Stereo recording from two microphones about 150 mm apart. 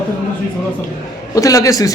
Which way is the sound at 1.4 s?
20° left (ahead or behind).